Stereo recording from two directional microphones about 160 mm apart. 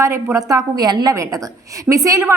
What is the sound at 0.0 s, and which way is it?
A woman's voice, 15° right (ahead or behind).